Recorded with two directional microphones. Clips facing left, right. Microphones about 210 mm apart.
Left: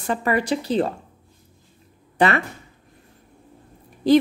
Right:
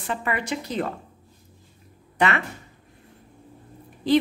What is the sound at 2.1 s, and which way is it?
Speech, 35° left (ahead or behind).